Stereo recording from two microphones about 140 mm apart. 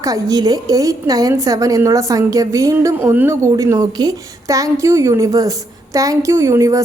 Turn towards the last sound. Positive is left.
turn(degrees=-20)  # may be behind; listen again after turning